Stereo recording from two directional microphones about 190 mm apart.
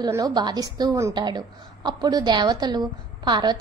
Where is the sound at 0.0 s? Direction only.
20° right (ahead or behind).